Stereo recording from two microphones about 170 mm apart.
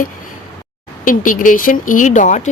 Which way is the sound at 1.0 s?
50° left (ahead or behind).